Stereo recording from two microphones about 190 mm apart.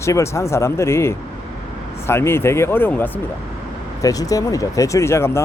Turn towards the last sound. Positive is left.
turn(degrees=15)  # may be behind; listen again after turning